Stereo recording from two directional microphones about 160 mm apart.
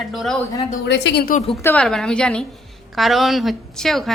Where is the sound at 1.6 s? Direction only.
5° left (ahead or behind).